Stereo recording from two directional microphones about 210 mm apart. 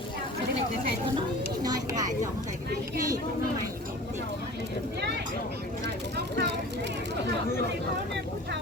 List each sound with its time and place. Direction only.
1.6 s a sound: 20° right (ahead or behind)
4.9 s speech: 55° right (ahead or behind)
6.1 s vehicle: 55° right (ahead or behind)